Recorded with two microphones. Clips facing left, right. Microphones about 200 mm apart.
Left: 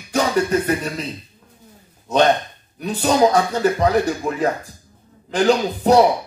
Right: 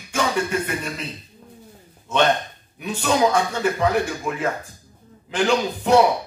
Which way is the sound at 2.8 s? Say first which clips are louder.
Left 4 dB; 35° left (ahead or behind).